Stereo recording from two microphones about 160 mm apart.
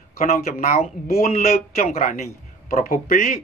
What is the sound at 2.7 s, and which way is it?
Speech, 55° left (ahead or behind).